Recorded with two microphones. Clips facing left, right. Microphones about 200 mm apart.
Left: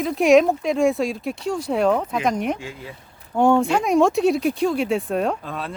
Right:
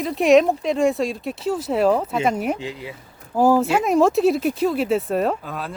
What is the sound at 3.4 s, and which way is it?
Speech, 5° right (ahead or behind).